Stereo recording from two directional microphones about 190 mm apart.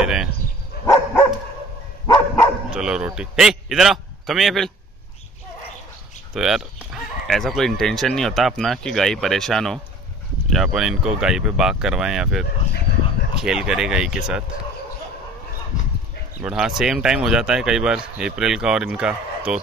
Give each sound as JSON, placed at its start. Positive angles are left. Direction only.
{"t": 0.0, "sound": "bow-wow", "side_deg": -5}
{"t": 2.0, "sound": "dog", "side_deg": 15}
{"t": 2.7, "sound": "a man's voice", "side_deg": -5}
{"t": 6.3, "sound": "speech", "side_deg": 0}
{"t": 16.4, "sound": "speech", "side_deg": -5}